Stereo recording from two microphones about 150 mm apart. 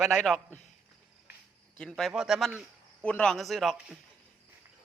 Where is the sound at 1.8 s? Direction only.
5° left (ahead or behind).